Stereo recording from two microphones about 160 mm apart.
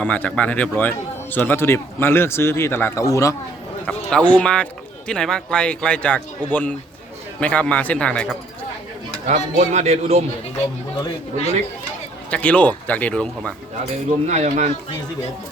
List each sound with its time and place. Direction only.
0.0 s speech: 10° left (ahead or behind)
4.1 s speech: 5° left (ahead or behind)
9.2 s speech: 45° right (ahead or behind)
12.3 s speech: 10° left (ahead or behind)
14.3 s speech: 45° right (ahead or behind)